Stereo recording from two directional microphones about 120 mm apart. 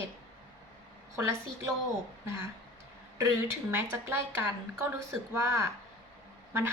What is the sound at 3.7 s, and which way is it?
A woman's voice, 20° right (ahead or behind).